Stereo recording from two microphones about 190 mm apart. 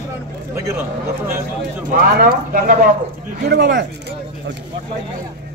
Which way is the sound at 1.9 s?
50° right (ahead or behind).